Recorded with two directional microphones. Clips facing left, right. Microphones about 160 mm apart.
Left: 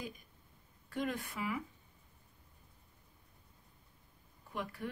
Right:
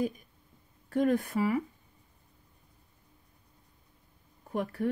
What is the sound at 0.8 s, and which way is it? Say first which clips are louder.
Speech: right 11 dB; 45° right (ahead or behind).